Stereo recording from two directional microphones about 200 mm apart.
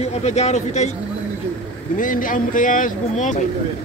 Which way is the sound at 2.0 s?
40° left (ahead or behind).